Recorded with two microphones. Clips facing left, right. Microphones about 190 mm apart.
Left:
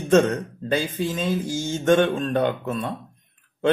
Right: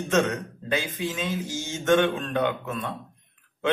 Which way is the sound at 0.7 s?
40° left (ahead or behind).